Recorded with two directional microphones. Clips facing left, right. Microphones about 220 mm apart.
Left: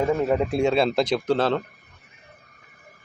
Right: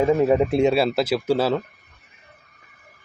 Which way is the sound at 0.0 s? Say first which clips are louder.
Right 4 dB; 20° right (ahead or behind).